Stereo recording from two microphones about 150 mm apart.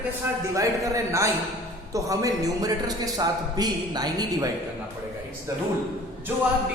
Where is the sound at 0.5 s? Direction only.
20° right (ahead or behind).